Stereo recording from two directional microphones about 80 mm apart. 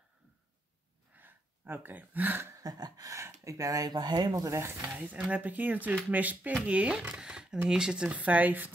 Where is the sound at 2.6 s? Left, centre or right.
Right.